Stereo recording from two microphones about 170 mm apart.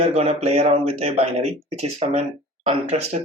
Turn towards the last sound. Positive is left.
turn(degrees=-40)  # may be behind; listen again after turning